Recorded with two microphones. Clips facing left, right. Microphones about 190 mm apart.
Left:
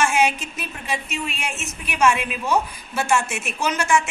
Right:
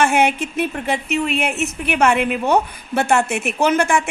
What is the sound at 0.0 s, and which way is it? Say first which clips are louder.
A woman's voice: right 4 dB; 60° right (ahead or behind).